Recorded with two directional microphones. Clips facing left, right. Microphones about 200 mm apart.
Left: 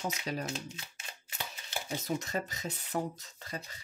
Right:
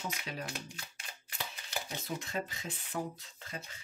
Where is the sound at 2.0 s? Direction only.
40° left (ahead or behind).